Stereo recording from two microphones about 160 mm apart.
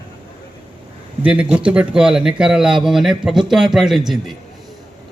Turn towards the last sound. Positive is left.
turn(degrees=0)  # may be behind; listen again after turning